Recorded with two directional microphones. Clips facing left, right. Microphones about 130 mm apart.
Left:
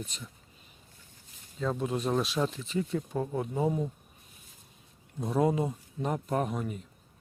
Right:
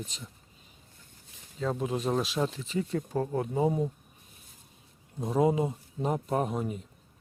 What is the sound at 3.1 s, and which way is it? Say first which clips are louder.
Speech: right 4 dB; 10° left (ahead or behind).